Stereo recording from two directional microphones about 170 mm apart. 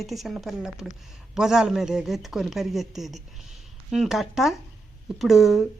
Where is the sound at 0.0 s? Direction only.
Centre (ahead or behind).